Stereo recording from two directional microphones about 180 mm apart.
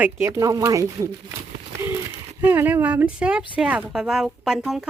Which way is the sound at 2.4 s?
10° right (ahead or behind).